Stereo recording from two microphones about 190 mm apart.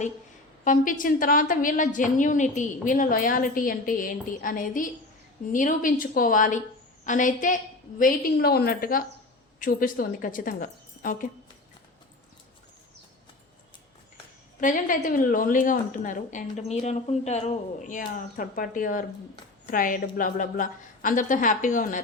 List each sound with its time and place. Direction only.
0.6 s a woman's voice: 45° left (ahead or behind)
14.6 s a woman's voice: 45° left (ahead or behind)